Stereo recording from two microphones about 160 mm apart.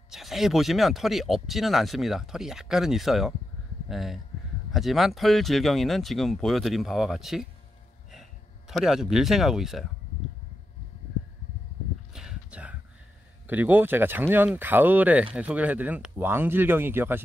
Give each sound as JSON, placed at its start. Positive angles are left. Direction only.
{"t": 0.1, "sound": "speech", "side_deg": 0}
{"t": 12.1, "sound": "a sound", "side_deg": -5}
{"t": 13.5, "sound": "speech", "side_deg": -10}